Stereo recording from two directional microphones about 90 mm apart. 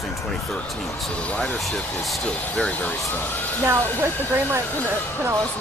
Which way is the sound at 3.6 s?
25° right (ahead or behind).